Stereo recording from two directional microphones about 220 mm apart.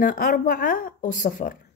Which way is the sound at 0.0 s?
40° left (ahead or behind).